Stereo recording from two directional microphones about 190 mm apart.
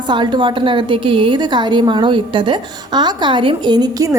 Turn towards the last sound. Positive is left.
turn(degrees=-20)  # may be behind; listen again after turning